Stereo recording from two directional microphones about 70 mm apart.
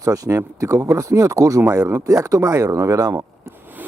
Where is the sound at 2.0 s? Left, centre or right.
Right.